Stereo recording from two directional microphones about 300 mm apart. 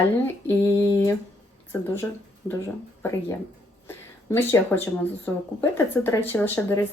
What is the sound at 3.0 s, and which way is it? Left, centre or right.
A woman's voice, centre.